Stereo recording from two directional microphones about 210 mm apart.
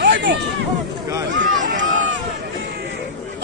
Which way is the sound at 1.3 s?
60° right (ahead or behind).